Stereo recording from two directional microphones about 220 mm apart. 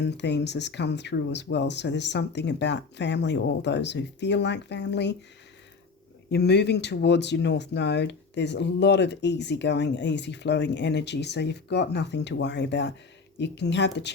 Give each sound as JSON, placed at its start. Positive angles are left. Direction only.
{"t": 0.0, "sound": "speech", "side_deg": 50}
{"t": 6.3, "sound": "speech", "side_deg": 50}